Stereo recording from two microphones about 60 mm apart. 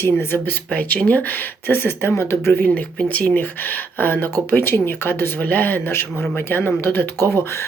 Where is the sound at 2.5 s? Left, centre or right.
Left.